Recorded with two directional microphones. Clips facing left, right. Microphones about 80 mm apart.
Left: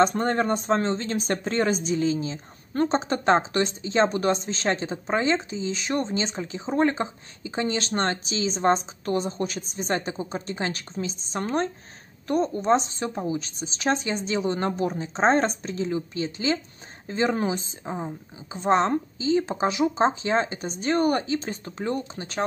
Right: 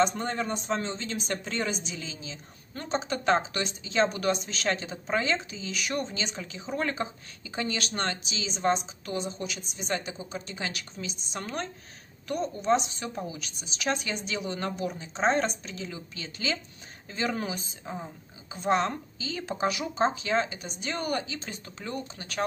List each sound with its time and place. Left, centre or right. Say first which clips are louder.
0.0 s a woman's voice: left 5 dB; left